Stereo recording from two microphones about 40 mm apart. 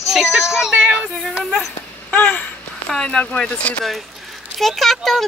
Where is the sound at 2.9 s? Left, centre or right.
Centre.